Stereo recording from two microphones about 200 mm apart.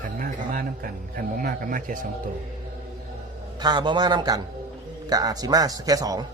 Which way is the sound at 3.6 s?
20° right (ahead or behind).